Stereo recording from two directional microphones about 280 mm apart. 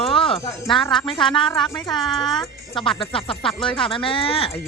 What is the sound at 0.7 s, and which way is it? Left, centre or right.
Speech, centre.